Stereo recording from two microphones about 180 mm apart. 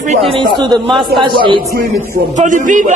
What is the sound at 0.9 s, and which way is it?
Speech, centre (ahead or behind).